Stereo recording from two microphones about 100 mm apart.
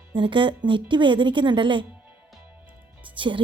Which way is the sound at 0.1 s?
55° right (ahead or behind).